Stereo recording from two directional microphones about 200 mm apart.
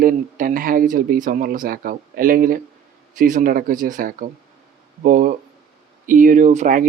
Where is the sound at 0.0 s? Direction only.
45° right (ahead or behind).